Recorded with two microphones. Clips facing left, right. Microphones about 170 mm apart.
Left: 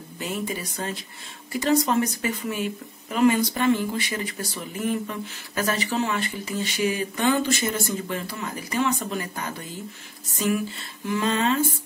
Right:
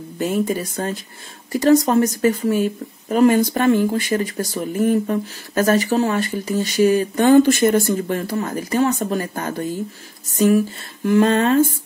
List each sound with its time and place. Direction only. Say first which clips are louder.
0.2 s speech: right 9 dB; 45° right (ahead or behind)